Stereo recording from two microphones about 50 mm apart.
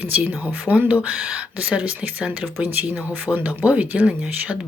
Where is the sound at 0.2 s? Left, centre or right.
Right.